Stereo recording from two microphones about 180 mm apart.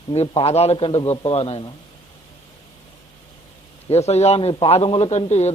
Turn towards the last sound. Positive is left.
turn(degrees=40)  # may be behind; listen again after turning